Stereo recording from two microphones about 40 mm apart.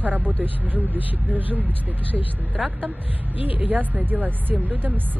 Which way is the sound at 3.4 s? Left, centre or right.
Right.